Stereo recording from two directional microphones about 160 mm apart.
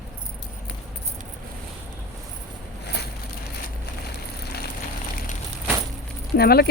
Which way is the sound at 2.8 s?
90° left.